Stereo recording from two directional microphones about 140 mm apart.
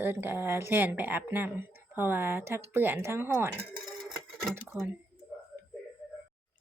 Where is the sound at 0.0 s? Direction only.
15° right (ahead or behind).